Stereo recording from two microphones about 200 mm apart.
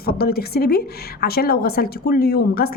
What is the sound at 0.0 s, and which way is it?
A woman's voice, 50° left (ahead or behind).